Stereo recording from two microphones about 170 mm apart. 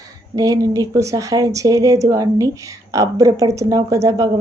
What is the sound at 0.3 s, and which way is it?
Speech, 20° right (ahead or behind).